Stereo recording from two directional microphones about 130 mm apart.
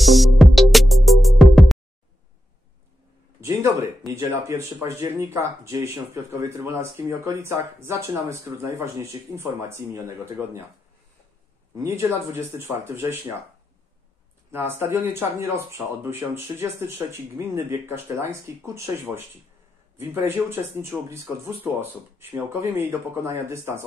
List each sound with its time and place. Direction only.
0.0 s music: centre (ahead or behind)
3.3 s a sound: 20° right (ahead or behind)
4.1 s speech: 20° right (ahead or behind)
11.7 s speech: 20° right (ahead or behind)
14.5 s speech: 15° right (ahead or behind)